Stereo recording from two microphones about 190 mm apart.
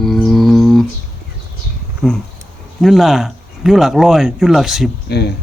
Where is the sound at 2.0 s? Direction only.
5° left (ahead or behind).